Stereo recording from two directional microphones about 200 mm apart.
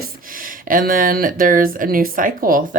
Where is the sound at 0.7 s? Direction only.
45° right (ahead or behind).